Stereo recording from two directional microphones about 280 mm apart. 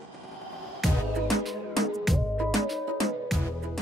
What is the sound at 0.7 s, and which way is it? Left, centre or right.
Music, centre.